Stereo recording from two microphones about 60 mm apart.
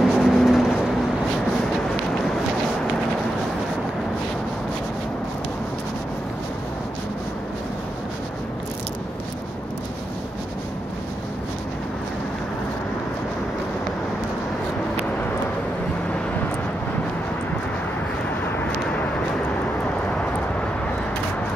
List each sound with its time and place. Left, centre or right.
0.0 s vehicle: centre
18.9 s vehicle: left